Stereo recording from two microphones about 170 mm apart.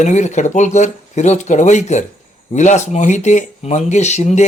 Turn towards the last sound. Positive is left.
turn(degrees=40)  # may be behind; listen again after turning